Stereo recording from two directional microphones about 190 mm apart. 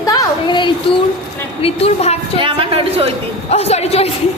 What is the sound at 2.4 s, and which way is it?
Speech, 30° right (ahead or behind).